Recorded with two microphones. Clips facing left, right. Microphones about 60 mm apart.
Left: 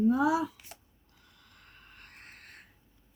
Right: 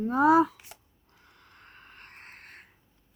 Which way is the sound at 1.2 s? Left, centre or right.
Right.